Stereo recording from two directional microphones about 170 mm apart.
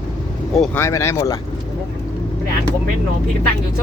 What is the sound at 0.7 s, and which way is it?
Speech, 15° left (ahead or behind).